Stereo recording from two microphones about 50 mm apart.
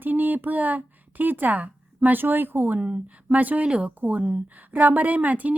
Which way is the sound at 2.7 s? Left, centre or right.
Right.